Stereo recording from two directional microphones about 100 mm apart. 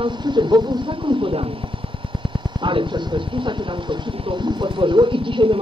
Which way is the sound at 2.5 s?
55° right (ahead or behind).